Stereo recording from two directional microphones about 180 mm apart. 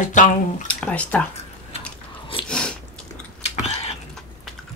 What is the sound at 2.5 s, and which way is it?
Biting, 5° left (ahead or behind).